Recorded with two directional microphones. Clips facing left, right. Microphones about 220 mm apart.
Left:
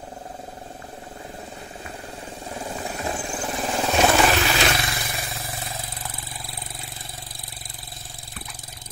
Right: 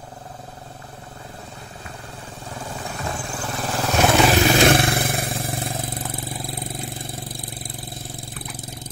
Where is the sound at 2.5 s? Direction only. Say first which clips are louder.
Left 1 dB; 20° left (ahead or behind).